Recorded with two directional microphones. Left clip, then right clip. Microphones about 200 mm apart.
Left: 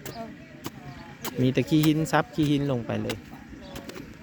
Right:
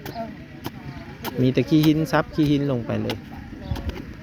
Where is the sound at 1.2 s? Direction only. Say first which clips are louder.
Right 4 dB; 5° left (ahead or behind).